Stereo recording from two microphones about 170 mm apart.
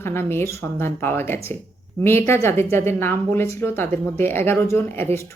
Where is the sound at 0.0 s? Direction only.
15° left (ahead or behind).